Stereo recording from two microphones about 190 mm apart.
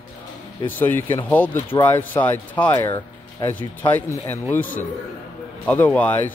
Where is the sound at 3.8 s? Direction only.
10° left (ahead or behind).